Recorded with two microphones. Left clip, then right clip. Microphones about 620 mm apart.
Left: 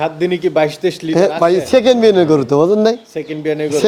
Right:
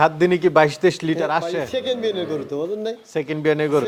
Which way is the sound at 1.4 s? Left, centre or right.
Left.